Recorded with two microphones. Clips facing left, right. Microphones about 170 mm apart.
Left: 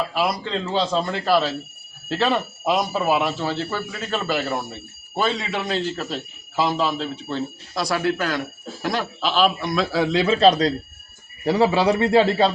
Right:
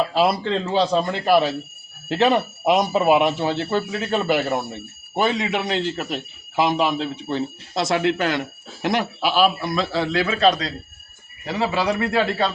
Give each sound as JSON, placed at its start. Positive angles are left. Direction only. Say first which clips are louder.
{"t": 0.1, "sound": "speech", "louder": "right 4 dB", "side_deg": -30}
{"t": 0.7, "sound": "speech", "louder": "right 2 dB", "side_deg": -15}
{"t": 9.9, "sound": "a man's voice", "louder": "left 4 dB", "side_deg": 15}
{"t": 10.4, "sound": "a man's voice", "louder": "left 3 dB", "side_deg": 35}